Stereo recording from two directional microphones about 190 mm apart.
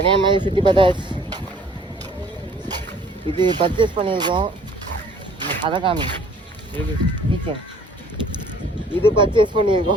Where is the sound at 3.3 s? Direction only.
25° right (ahead or behind).